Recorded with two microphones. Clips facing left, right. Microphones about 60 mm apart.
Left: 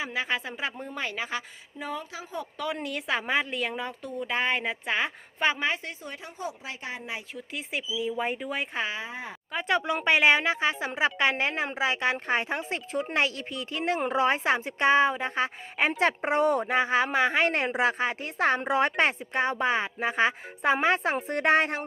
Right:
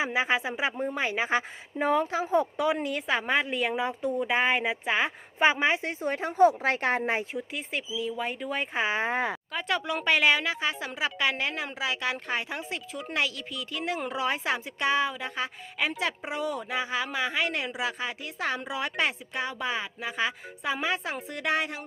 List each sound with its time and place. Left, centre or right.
0.0 s a woman's voice: centre
1.9 s speech: right
2.6 s a woman's voice: centre
5.4 s a woman's voice: centre; by 7.1 s right
7.5 s a woman's voice: centre
7.9 s speech: centre
8.4 s a woman's voice: centre
9.0 s speech: right
9.5 s a woman's voice: left